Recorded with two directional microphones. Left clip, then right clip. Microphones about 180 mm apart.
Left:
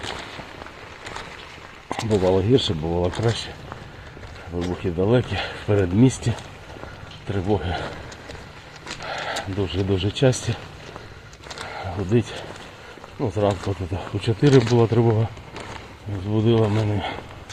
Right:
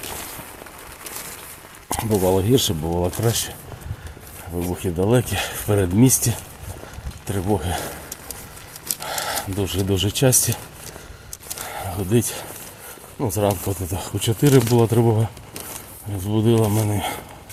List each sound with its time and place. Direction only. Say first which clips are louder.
1.9 s speech: even; 20° right (ahead or behind)
4.5 s speech: right 1 dB; 25° right (ahead or behind)
9.0 s speech: right 1 dB; 30° right (ahead or behind)
11.6 s a sound: right 1 dB; 25° right (ahead or behind)
13.1 s speech: right 1 dB; 30° right (ahead or behind)
16.3 s speech: right 1 dB; 30° right (ahead or behind)